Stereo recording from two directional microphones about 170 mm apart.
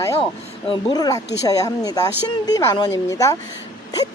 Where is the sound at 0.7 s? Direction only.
25° left (ahead or behind).